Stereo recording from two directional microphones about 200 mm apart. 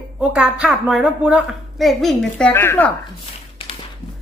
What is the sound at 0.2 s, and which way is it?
A woman's voice, 5° right (ahead or behind).